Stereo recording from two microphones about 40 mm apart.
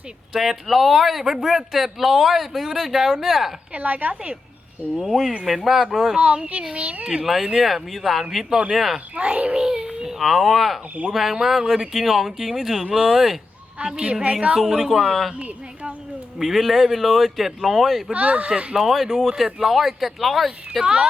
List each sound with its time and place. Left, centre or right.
0.3 s speech: centre
3.8 s a woman's voice: right
5.0 s speech: centre
6.7 s a woman's voice: right
7.5 s speech: centre
9.1 s a woman's voice: right
9.6 s babbling: centre
10.1 s speech: centre
14.0 s a woman's voice: right
14.6 s speech: centre
16.4 s speech: centre
18.1 s a woman's voice: right
18.7 s speech: centre
20.8 s speech: right